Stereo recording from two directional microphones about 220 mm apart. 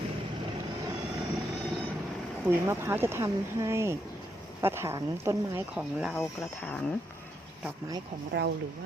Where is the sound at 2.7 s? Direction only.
10° right (ahead or behind).